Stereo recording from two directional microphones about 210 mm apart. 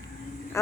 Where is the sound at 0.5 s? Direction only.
15° left (ahead or behind).